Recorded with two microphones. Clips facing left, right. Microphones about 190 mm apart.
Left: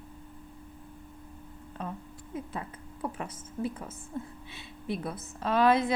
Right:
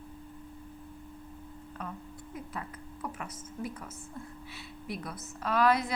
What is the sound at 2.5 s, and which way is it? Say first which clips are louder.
A woman's voice: left 2 dB; 30° left (ahead or behind).